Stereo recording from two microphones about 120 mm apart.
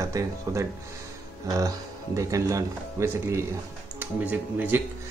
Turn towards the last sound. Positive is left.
turn(degrees=-15)  # may be behind; listen again after turning